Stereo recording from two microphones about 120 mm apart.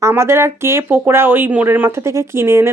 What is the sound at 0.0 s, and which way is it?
Speech, 20° right (ahead or behind).